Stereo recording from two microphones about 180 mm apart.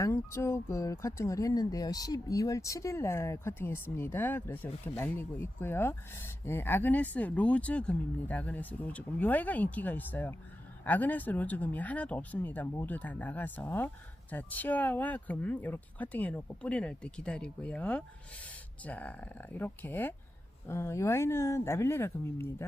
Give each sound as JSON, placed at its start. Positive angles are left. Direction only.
{"t": 0.0, "sound": "speech", "side_deg": 15}